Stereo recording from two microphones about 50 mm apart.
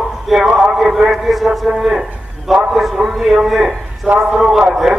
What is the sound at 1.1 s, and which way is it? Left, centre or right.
A man's voice, centre.